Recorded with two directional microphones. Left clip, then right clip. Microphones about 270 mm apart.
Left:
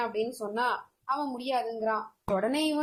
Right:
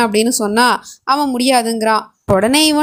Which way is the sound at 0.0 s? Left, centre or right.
Right.